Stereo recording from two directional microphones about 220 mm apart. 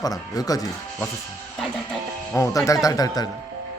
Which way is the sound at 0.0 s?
15° left (ahead or behind).